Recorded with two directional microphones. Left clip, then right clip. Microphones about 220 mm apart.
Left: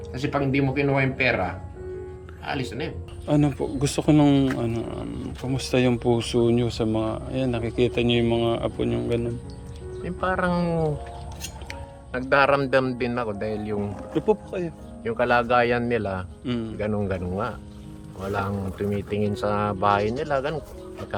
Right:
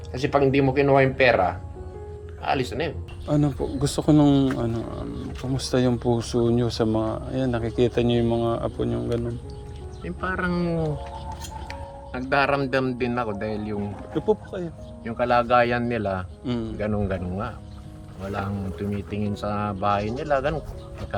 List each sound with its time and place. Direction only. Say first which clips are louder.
0.1 s speech: right 5 dB; 5° right (ahead or behind)
2.4 s speech: right 5 dB; 10° right (ahead or behind)
3.2 s speech: left 1 dB; 10° left (ahead or behind)
10.0 s speech: left 3 dB; 25° left (ahead or behind)
11.7 s speech: left 4 dB; 10° left (ahead or behind)